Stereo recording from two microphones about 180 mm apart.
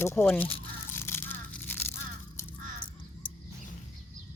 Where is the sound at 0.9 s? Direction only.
15° left (ahead or behind).